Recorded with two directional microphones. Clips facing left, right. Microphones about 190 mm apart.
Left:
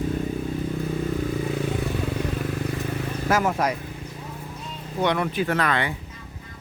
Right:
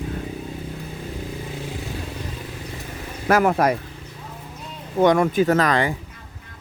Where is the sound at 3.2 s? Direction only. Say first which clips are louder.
Right 5 dB; 60° right (ahead or behind).